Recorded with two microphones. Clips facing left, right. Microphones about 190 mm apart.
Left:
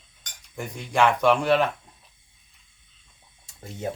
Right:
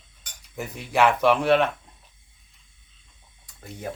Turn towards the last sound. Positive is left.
turn(degrees=25)  # may be behind; listen again after turning